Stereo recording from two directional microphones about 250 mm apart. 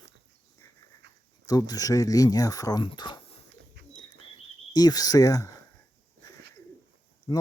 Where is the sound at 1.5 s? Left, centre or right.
Centre.